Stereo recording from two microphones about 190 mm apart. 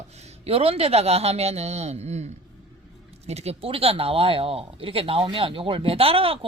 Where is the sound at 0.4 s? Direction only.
30° right (ahead or behind).